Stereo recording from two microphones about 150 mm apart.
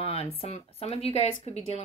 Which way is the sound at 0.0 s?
45° left (ahead or behind).